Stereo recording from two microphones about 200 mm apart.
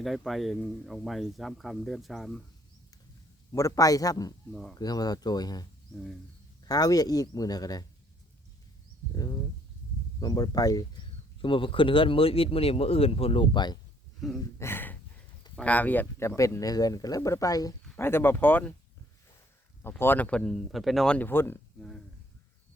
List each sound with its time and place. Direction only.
0.0 s speech: centre (ahead or behind)
3.5 s speech: 15° left (ahead or behind)
6.7 s speech: 20° left (ahead or behind)
9.1 s speech: 20° left (ahead or behind)
14.3 s speech: 10° left (ahead or behind)
19.8 s speech: 10° left (ahead or behind)